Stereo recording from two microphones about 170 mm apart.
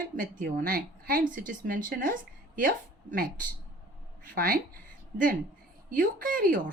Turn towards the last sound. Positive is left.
turn(degrees=-55)  # may be behind; listen again after turning